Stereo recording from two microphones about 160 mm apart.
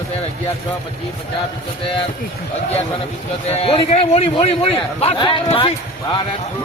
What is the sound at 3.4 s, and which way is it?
A man's voice, 40° left (ahead or behind).